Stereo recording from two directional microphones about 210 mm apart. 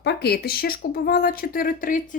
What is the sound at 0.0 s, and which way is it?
Speech, 50° left (ahead or behind).